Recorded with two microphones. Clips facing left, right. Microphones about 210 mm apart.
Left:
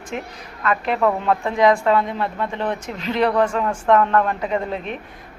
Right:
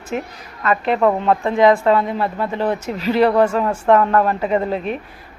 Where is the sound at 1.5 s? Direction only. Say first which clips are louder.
Right 2 dB; centre (ahead or behind).